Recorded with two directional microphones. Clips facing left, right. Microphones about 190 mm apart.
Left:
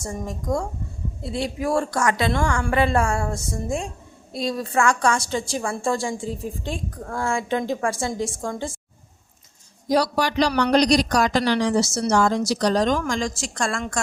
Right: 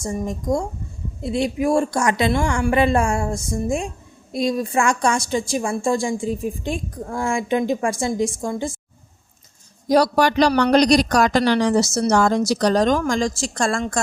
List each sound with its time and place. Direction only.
0.0 s a woman's voice: 15° right (ahead or behind)
9.9 s speech: 50° right (ahead or behind); by 14.0 s 35° right (ahead or behind)